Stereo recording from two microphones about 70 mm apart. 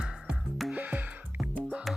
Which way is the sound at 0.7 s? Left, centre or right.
Right.